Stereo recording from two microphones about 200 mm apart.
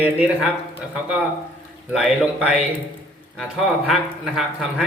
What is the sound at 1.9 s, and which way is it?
A man's voice, centre (ahead or behind).